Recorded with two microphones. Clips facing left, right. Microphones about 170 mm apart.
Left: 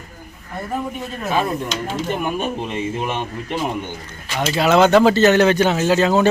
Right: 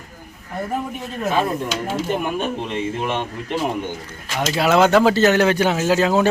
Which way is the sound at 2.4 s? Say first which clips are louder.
Even; 10° left (ahead or behind).